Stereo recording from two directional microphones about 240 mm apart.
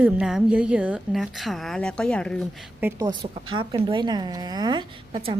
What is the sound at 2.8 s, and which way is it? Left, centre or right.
A woman's voice, centre.